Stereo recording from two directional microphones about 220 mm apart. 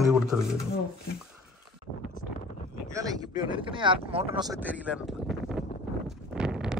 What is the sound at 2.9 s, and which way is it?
Speech, 15° right (ahead or behind).